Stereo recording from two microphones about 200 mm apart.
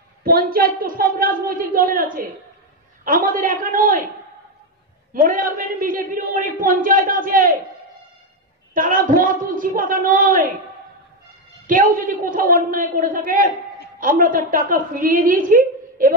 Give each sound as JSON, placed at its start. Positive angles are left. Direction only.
{"t": 0.2, "sound": "a man's voice", "side_deg": -50}
{"t": 5.1, "sound": "a man's voice", "side_deg": -40}
{"t": 8.7, "sound": "a man's voice", "side_deg": -45}
{"t": 11.6, "sound": "a man's voice", "side_deg": -45}